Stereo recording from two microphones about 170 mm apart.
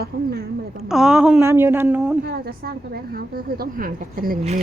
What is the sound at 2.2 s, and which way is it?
A woman's voice, 65° right (ahead or behind).